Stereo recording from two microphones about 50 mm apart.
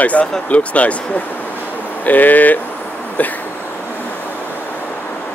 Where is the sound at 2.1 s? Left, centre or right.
Left.